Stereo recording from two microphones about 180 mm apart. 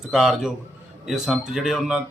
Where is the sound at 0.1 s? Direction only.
Centre (ahead or behind).